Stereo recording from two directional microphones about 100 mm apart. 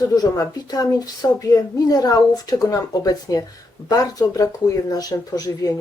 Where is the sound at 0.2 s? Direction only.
40° left (ahead or behind).